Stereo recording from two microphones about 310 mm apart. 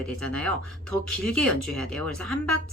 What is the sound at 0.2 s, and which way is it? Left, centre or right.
Speech, centre.